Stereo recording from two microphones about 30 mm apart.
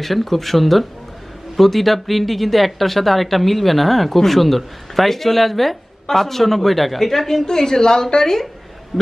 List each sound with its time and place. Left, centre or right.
0.0 s a woman's voice: centre
8.9 s a woman's voice: centre